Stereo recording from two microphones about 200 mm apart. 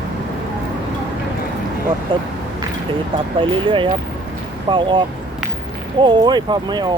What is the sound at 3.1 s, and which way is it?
Speech, 25° right (ahead or behind).